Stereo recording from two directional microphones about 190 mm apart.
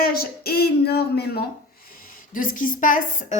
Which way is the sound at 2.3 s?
45° left (ahead or behind).